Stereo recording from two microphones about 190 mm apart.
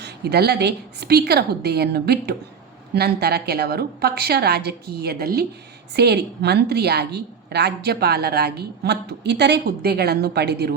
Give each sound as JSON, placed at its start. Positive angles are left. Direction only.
{"t": 0.0, "sound": "a woman's voice", "side_deg": -55}